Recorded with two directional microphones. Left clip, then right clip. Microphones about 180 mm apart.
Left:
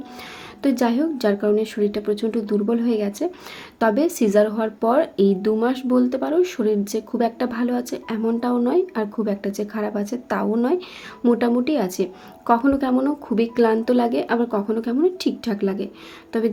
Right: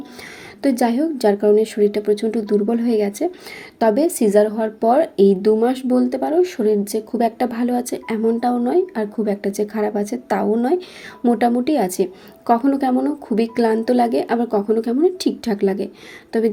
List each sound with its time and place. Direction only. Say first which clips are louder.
0.6 s a woman's voice: right 2 dB; 5° right (ahead or behind)